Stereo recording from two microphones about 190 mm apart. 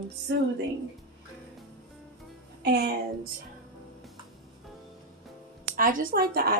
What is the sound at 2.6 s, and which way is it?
Speech, 60° right (ahead or behind).